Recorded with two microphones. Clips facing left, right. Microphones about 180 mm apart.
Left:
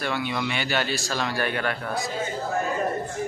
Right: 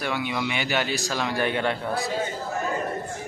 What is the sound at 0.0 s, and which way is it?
A man's voice, 15° right (ahead or behind).